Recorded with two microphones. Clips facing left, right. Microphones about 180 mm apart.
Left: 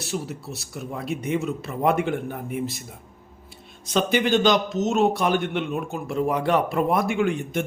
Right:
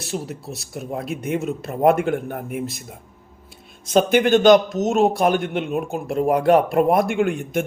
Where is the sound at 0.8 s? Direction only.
50° right (ahead or behind).